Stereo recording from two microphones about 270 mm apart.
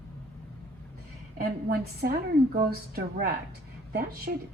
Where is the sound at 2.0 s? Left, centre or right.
Right.